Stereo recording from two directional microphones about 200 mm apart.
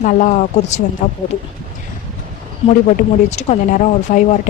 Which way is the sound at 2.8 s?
35° left (ahead or behind).